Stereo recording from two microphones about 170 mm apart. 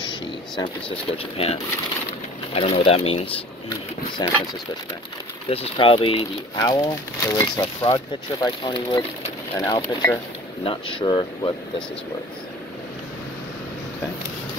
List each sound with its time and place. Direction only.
0.0 s speech: 25° left (ahead or behind)
4.2 s speech: 25° left (ahead or behind)
5.5 s speech: 35° left (ahead or behind)
9.6 s speech: 20° left (ahead or behind)
10.6 s speech: 30° left (ahead or behind)